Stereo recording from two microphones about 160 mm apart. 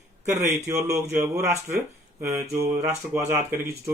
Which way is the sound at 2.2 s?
20° right (ahead or behind).